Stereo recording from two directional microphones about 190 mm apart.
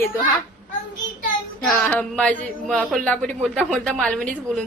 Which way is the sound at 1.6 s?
10° left (ahead or behind).